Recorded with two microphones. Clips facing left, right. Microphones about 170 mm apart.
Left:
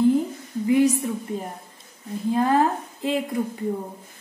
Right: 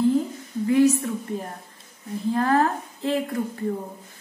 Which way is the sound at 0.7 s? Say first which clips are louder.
Even; 15° left (ahead or behind).